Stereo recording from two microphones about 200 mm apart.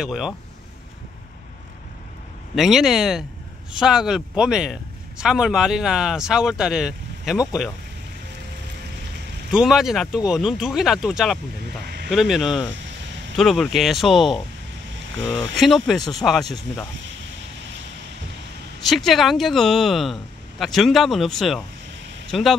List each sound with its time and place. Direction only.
0.0 s speech: centre (ahead or behind)
2.5 s speech: centre (ahead or behind)
9.5 s speech: centre (ahead or behind)
11.8 s a sound: 55° right (ahead or behind)
12.1 s speech: centre (ahead or behind)
18.9 s speech: centre (ahead or behind)